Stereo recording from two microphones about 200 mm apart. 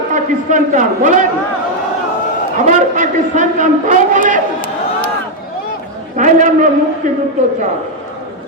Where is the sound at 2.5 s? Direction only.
40° right (ahead or behind).